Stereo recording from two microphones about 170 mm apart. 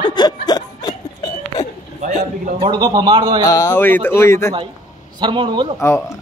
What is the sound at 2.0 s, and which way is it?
Speech, 50° right (ahead or behind).